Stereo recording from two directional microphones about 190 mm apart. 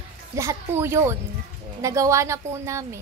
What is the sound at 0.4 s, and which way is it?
Speech, 15° right (ahead or behind).